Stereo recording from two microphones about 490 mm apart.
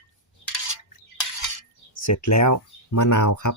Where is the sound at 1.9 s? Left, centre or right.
Left.